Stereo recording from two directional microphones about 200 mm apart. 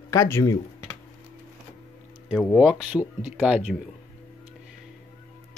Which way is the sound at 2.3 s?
5° right (ahead or behind).